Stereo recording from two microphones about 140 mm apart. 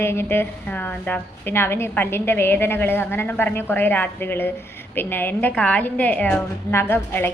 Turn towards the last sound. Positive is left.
turn(degrees=15)  # may be behind; listen again after turning